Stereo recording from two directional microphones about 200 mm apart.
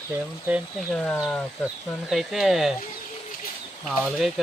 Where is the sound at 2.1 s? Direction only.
Centre (ahead or behind).